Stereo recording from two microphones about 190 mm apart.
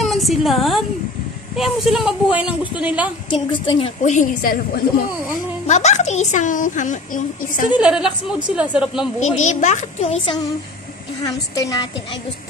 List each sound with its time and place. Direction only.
0.0 s a woman's voice: centre (ahead or behind)
3.3 s a woman's voice: 30° left (ahead or behind)
4.0 s a woman's voice: 40° left (ahead or behind)
5.7 s a woman's voice: 35° left (ahead or behind)
7.7 s speech: 5° right (ahead or behind)
9.2 s a woman's voice: 40° left (ahead or behind)
11.2 s a woman's voice: 20° left (ahead or behind)